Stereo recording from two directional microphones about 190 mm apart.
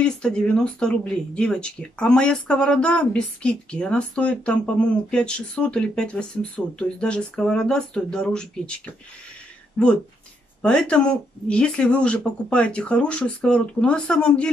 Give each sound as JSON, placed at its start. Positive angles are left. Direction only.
{"t": 0.0, "sound": "speech", "side_deg": 5}